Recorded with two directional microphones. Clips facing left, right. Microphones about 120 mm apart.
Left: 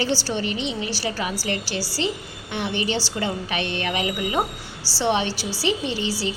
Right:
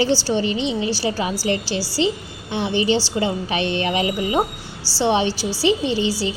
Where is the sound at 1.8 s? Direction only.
35° left (ahead or behind).